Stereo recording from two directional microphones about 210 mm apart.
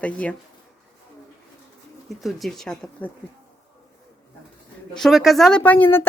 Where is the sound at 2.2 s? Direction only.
Centre (ahead or behind).